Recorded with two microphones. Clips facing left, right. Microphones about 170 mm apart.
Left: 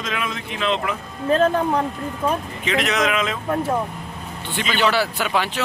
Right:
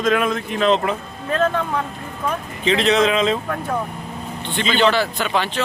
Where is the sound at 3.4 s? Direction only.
20° left (ahead or behind).